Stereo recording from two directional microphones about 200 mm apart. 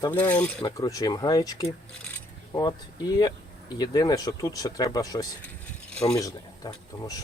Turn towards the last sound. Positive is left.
turn(degrees=20)  # may be behind; listen again after turning